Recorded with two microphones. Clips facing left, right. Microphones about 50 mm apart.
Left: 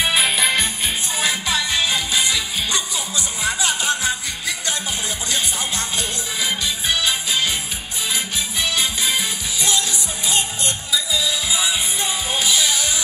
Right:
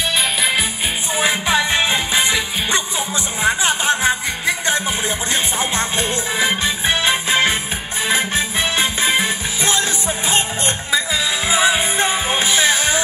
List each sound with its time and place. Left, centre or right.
0.1 s music: centre
1.1 s music: right
10.9 s music: right